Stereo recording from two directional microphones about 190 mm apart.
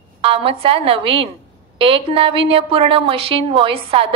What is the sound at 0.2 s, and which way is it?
A woman's voice, 30° right (ahead or behind).